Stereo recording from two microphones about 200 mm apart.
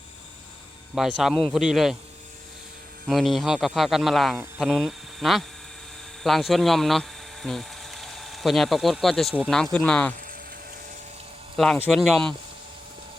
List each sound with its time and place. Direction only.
0.9 s a man's voice: centre (ahead or behind)
3.1 s a man's voice: centre (ahead or behind)
11.5 s a man's voice: 5° left (ahead or behind)